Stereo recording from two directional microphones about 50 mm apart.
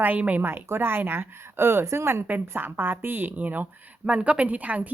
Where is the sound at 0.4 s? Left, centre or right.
Right.